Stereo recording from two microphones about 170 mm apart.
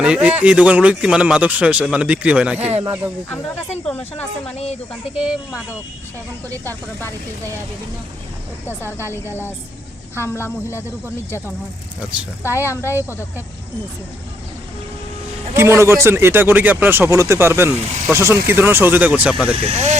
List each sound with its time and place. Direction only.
0.0 s speech: 5° right (ahead or behind)
3.2 s speech: 10° left (ahead or behind)
5.1 s speech: 5° right (ahead or behind)
8.8 s speech: 15° left (ahead or behind)
10.2 s speech: 15° left (ahead or behind)
15.5 s speech: 15° right (ahead or behind)
19.5 s speech: 35° right (ahead or behind)